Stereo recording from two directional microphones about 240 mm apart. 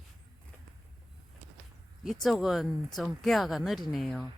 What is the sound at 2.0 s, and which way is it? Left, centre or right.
Speech, centre.